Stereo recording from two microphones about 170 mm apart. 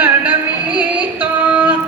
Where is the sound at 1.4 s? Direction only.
10° right (ahead or behind).